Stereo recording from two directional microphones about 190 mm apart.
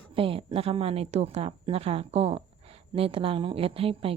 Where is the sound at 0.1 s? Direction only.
30° right (ahead or behind).